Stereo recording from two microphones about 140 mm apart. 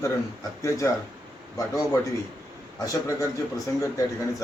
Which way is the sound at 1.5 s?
25° left (ahead or behind).